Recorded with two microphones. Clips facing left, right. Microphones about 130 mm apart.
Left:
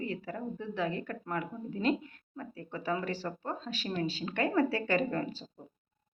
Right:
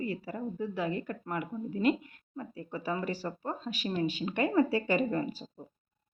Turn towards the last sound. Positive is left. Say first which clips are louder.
# right 2 dB
turn(degrees=-10)  # may be behind; listen again after turning